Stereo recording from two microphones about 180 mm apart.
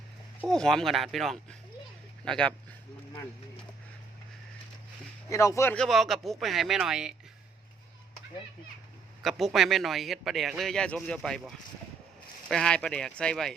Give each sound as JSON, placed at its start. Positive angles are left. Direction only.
{"t": 0.4, "sound": "a man's voice", "side_deg": 5}
{"t": 5.3, "sound": "speech", "side_deg": 15}
{"t": 5.7, "sound": "a man's voice", "side_deg": 0}
{"t": 9.2, "sound": "a man's voice", "side_deg": 0}